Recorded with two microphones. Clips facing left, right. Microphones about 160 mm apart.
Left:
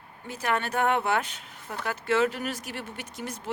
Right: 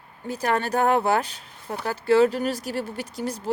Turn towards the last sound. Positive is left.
turn(degrees=-35)  # may be behind; listen again after turning